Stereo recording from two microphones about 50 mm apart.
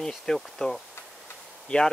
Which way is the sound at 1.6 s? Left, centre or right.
Centre.